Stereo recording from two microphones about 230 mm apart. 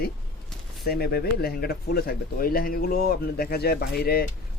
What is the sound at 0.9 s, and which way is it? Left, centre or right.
Speech, left.